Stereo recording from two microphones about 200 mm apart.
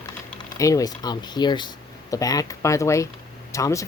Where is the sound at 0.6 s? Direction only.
15° left (ahead or behind).